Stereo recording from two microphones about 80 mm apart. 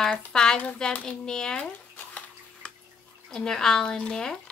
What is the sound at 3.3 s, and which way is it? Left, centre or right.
Speech, centre.